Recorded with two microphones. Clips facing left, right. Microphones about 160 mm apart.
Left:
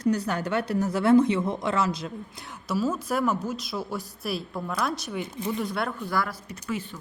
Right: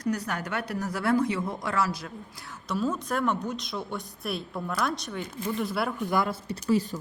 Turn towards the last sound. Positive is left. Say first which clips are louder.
# right 7 dB
turn(degrees=-40)  # may be behind; listen again after turning